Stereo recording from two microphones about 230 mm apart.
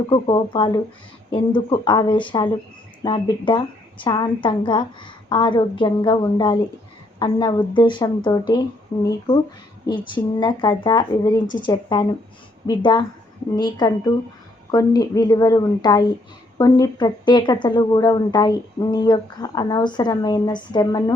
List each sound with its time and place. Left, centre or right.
0.1 s a woman's voice: left